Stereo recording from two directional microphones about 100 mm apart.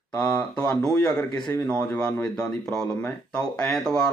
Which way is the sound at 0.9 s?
5° left (ahead or behind).